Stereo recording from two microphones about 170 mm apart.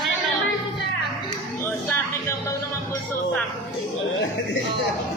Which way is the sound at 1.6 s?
15° left (ahead or behind).